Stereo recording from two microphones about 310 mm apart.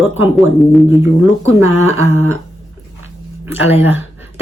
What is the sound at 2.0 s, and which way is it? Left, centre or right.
Speech, left.